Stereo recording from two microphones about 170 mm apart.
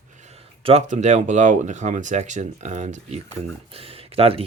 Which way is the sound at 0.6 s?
40° right (ahead or behind).